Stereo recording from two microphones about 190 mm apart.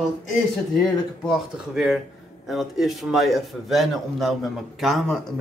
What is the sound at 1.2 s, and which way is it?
A man's voice, centre (ahead or behind).